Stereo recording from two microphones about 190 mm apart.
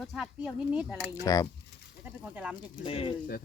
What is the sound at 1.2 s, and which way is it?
Speech, 15° left (ahead or behind).